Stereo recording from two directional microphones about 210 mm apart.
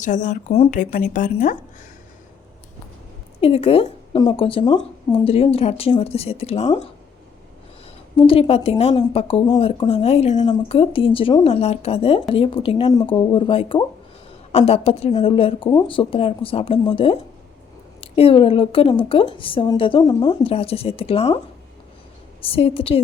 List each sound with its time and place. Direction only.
0.0 s speech: 35° left (ahead or behind)
3.4 s speech: 25° left (ahead or behind)
8.1 s speech: 25° left (ahead or behind)
22.4 s speech: 25° left (ahead or behind)